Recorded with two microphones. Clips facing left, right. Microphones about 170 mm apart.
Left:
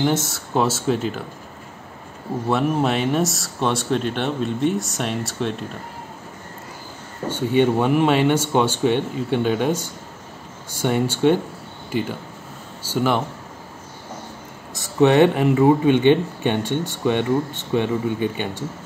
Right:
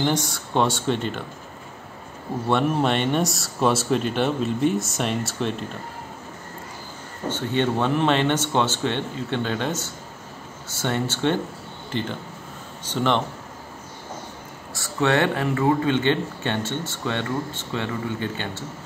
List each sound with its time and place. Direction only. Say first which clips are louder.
0.0 s speech: left 2 dB; 5° left (ahead or behind)
2.4 s speech: left 1 dB; 5° left (ahead or behind)
7.2 s speech: left 5 dB; 10° left (ahead or behind)
14.7 s speech: left 6 dB; 20° left (ahead or behind)